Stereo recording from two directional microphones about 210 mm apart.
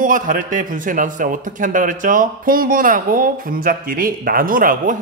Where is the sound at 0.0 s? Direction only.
40° right (ahead or behind).